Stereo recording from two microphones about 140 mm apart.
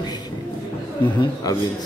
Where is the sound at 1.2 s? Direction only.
25° left (ahead or behind).